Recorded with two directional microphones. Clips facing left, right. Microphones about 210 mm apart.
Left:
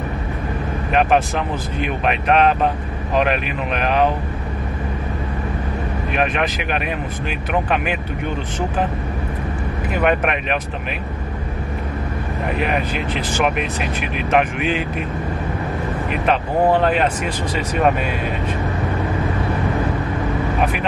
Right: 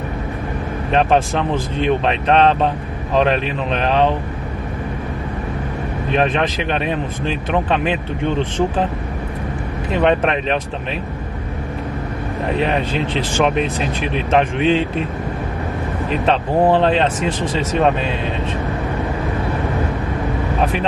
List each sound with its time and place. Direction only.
0.9 s speech: 30° right (ahead or behind)
6.1 s speech: 30° right (ahead or behind)
9.9 s speech: 30° right (ahead or behind)
12.4 s speech: 30° right (ahead or behind)
16.1 s speech: 30° right (ahead or behind)